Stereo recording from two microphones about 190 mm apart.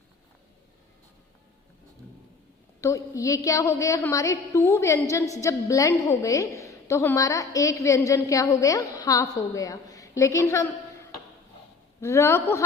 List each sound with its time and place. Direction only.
2.8 s a woman's voice: 15° left (ahead or behind)
11.9 s a woman's voice: 15° left (ahead or behind)